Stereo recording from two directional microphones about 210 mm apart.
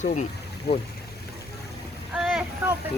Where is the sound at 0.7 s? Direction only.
50° left (ahead or behind).